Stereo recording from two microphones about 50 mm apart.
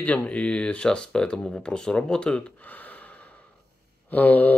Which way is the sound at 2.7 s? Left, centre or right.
Left.